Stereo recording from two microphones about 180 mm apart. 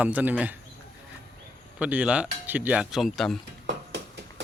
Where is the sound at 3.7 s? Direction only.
75° right (ahead or behind).